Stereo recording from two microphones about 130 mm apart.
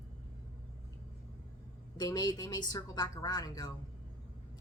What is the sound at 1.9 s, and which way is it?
Speech, 30° left (ahead or behind).